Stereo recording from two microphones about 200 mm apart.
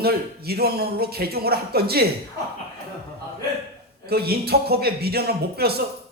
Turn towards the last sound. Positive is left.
turn(degrees=-50)  # may be behind; listen again after turning